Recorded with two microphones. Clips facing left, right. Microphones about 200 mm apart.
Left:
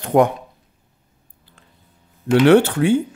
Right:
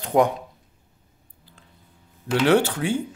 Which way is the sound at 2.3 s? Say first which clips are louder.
Left 7 dB; 60° left (ahead or behind).